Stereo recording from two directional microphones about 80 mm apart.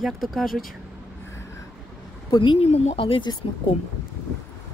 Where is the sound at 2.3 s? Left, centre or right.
Left.